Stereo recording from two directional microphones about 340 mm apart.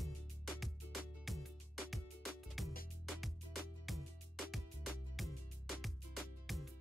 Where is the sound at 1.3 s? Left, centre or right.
Centre.